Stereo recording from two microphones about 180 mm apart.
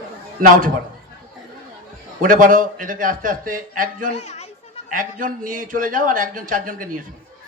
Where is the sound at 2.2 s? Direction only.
50° right (ahead or behind).